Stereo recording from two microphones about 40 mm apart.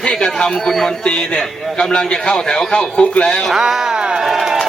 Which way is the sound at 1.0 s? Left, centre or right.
Left.